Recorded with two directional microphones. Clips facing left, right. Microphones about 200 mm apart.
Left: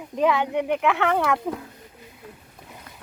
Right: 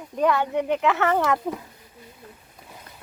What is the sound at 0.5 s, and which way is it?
Speech, 10° left (ahead or behind).